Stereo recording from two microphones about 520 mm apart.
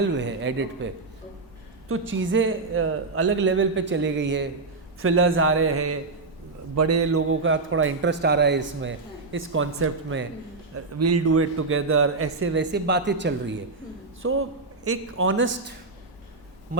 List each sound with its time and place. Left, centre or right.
0.1 s a man's voice: right
1.9 s a man's voice: right